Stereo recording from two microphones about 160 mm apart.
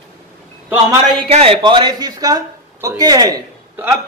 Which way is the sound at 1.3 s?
35° right (ahead or behind).